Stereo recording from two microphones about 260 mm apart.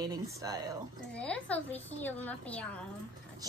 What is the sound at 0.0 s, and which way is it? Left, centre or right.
Speech, centre.